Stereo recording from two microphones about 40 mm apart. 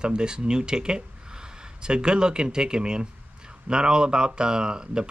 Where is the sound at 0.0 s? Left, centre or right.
Right.